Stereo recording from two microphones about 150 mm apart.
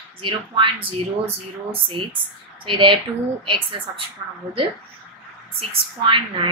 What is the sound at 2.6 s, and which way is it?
Speech, 35° right (ahead or behind).